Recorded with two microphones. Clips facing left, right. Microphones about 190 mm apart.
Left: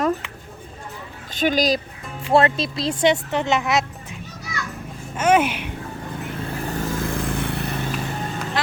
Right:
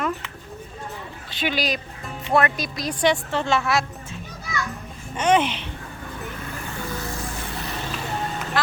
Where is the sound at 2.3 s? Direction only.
25° left (ahead or behind).